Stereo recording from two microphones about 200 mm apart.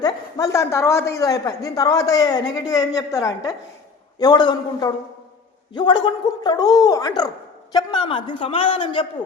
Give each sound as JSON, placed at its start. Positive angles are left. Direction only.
{"t": 0.0, "sound": "a man's voice", "side_deg": 20}